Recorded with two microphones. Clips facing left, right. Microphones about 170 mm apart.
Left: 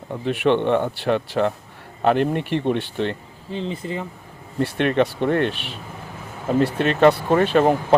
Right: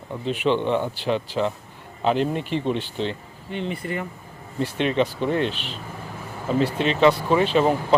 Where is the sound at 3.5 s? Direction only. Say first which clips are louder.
Left 1 dB; 30° left (ahead or behind).